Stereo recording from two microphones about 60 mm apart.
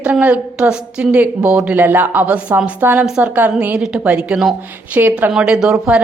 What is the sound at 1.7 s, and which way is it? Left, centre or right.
Speech, right.